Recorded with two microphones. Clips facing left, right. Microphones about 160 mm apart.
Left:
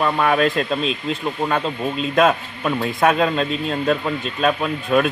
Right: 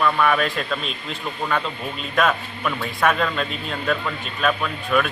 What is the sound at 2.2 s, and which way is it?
A man's voice, 30° left (ahead or behind).